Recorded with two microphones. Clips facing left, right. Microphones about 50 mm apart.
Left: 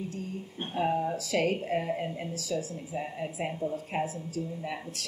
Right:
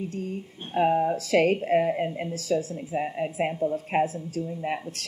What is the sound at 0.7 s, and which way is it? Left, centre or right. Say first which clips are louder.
Speech: right 6 dB; right.